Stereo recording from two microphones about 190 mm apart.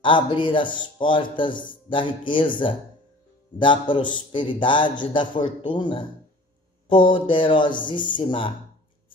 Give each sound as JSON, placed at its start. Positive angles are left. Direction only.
{"t": 0.0, "sound": "speech", "side_deg": 25}